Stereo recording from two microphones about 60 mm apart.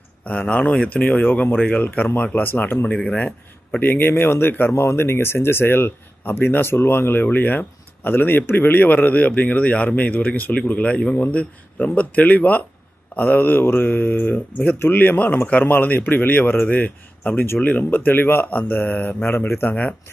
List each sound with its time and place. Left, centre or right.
0.3 s speech: left
4.7 s speech: left